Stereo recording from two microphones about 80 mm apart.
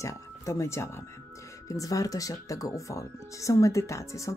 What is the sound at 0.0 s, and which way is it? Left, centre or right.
Speech, left.